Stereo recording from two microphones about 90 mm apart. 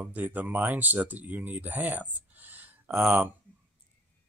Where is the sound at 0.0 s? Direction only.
20° right (ahead or behind).